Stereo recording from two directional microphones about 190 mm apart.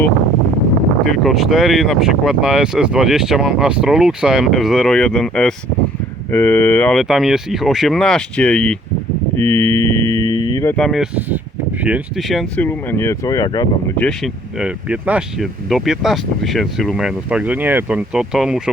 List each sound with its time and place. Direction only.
1.0 s speech: centre (ahead or behind); by 10.8 s 20° left (ahead or behind)
10.8 s speech: centre (ahead or behind); by 13.9 s 20° left (ahead or behind)
14.6 s speech: 5° right (ahead or behind)